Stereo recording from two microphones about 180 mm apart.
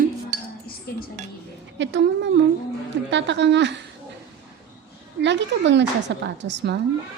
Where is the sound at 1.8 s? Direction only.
85° right.